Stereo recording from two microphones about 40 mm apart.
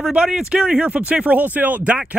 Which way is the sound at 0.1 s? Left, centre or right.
Right.